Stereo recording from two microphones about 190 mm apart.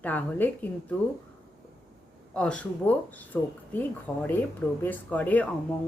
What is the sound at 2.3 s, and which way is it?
Speech, 5° left (ahead or behind).